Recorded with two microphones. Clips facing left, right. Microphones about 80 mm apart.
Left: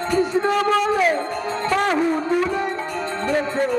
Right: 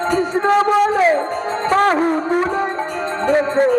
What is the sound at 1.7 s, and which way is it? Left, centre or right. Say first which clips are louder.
Music: right 5 dB; right.